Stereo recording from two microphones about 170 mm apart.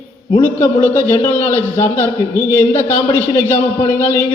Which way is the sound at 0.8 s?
10° left (ahead or behind).